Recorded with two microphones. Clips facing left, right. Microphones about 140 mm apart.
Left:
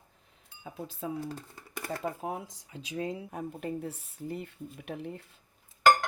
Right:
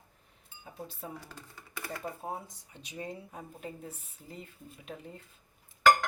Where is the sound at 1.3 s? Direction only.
40° left (ahead or behind).